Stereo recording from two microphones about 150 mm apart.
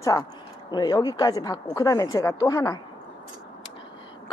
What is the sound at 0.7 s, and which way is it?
A woman's voice, 30° left (ahead or behind).